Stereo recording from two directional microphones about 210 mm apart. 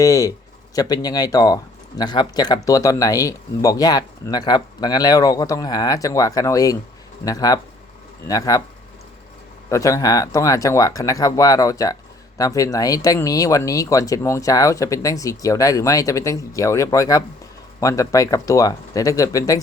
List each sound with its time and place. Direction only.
0.0 s speech: 15° left (ahead or behind)
9.6 s speech: 15° left (ahead or behind)